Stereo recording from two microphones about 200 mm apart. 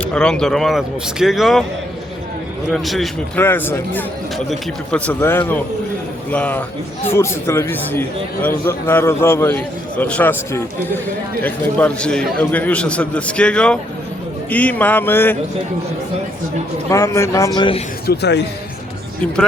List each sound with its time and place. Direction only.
0.0 s a man's voice: 5° left (ahead or behind)
2.7 s a man's voice: centre (ahead or behind)
3.4 s a man's voice: 10° left (ahead or behind)
16.9 s a man's voice: 15° left (ahead or behind)
18.0 s a man's voice: 55° left (ahead or behind)